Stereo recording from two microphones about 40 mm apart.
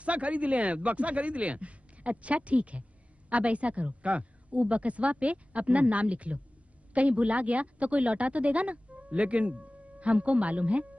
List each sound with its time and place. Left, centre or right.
0.0 s speech: right